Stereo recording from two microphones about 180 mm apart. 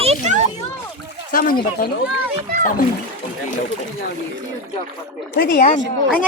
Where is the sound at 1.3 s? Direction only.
55° left (ahead or behind).